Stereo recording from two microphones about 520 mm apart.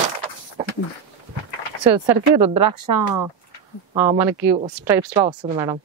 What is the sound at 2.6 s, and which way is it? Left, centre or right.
Speech, right.